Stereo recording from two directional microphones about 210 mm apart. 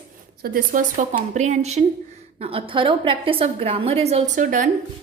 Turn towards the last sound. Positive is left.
turn(degrees=-40)  # may be behind; listen again after turning